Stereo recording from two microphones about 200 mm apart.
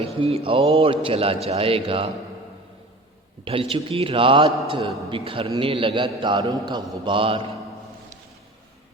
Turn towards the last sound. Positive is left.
turn(degrees=-25)  # may be behind; listen again after turning